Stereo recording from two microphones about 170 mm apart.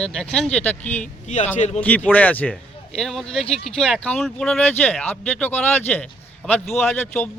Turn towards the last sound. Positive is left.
turn(degrees=5)  # may be behind; listen again after turning